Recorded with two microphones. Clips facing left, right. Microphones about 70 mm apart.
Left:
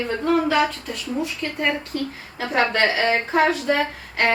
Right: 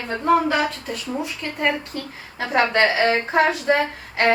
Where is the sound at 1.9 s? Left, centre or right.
Right.